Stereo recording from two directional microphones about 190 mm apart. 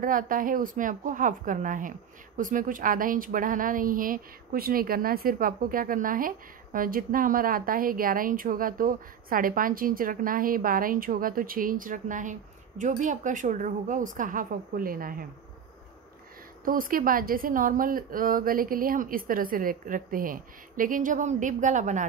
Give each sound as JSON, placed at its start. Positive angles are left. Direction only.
{"t": 0.0, "sound": "speech", "side_deg": -45}
{"t": 16.6, "sound": "speech", "side_deg": -50}